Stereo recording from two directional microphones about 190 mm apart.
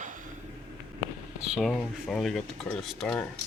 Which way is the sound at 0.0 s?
45° right (ahead or behind).